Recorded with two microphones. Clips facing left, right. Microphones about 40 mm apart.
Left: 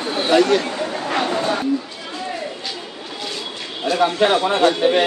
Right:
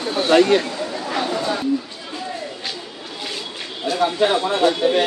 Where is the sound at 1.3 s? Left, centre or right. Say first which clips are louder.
Left 2 dB; left.